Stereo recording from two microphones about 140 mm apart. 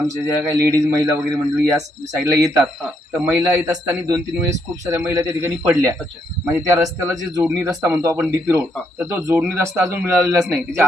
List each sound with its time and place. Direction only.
0.1 s a man's voice: 20° right (ahead or behind)